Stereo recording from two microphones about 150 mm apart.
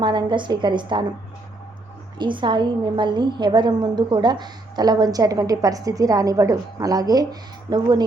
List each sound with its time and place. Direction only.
0.0 s a woman's voice: 30° right (ahead or behind)
2.1 s a woman's voice: 30° right (ahead or behind)